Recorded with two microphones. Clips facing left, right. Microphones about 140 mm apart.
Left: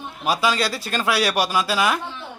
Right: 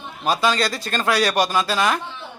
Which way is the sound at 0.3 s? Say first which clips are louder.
Right 1 dB; 10° left (ahead or behind).